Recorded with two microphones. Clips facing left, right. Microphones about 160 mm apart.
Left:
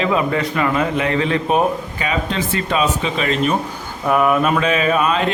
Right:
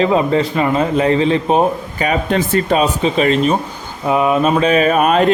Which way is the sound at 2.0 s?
45° right (ahead or behind).